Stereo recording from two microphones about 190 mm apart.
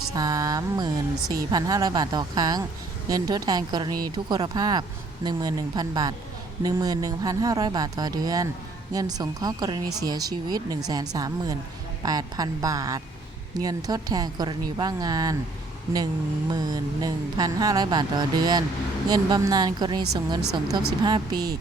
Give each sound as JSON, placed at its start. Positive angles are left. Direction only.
{"t": 0.1, "sound": "a woman's voice", "side_deg": -20}
{"t": 16.5, "sound": "speech", "side_deg": -20}